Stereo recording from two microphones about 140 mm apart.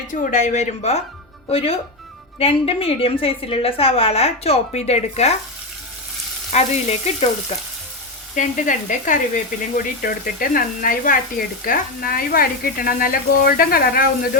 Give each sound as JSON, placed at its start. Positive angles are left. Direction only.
{"t": 0.1, "sound": "a woman's voice", "side_deg": 65}
{"t": 6.5, "sound": "a woman's voice", "side_deg": 55}
{"t": 8.4, "sound": "speech", "side_deg": 65}